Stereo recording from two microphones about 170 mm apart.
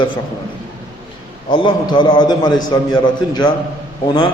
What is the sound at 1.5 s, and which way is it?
A man's voice, 30° left (ahead or behind).